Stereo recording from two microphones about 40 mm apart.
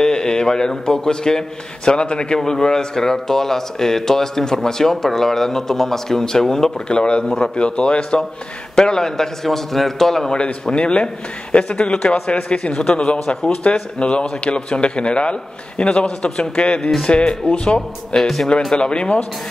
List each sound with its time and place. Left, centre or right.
0.0 s a man's voice: centre
6.9 s a man's voice: left
10.3 s a man's voice: left
18.2 s a man's voice: centre
18.8 s a man's voice: left